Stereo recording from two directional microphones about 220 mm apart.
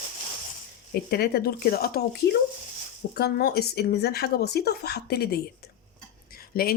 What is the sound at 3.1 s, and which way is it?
Speech, 45° left (ahead or behind).